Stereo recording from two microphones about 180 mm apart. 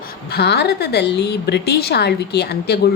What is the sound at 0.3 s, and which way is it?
A woman's voice, 65° left (ahead or behind).